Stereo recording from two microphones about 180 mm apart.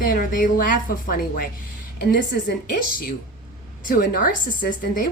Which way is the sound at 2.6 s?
55° left (ahead or behind).